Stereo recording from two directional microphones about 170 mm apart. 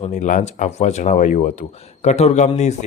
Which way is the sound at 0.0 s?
45° left (ahead or behind).